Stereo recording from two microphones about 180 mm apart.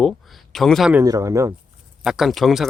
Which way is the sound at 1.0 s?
20° right (ahead or behind).